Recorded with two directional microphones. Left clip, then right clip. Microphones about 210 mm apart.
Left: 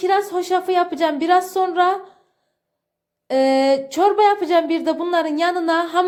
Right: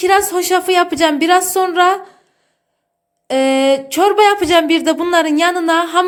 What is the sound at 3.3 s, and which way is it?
Speech, 5° left (ahead or behind).